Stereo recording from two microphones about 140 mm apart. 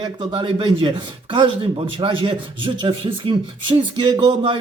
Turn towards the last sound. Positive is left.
turn(degrees=-35)  # may be behind; listen again after turning